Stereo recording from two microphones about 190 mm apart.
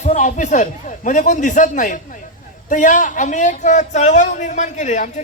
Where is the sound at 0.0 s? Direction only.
40° left (ahead or behind).